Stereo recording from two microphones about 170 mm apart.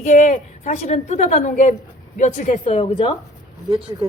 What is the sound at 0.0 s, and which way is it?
A woman's voice, 45° left (ahead or behind).